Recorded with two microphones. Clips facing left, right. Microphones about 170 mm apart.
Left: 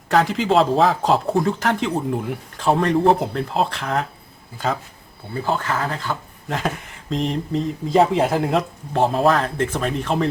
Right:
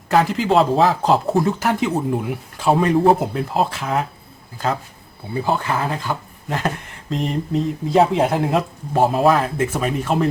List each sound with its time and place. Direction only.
0.1 s speech: centre (ahead or behind)
5.3 s speech: 15° right (ahead or behind)
6.5 s speech: centre (ahead or behind)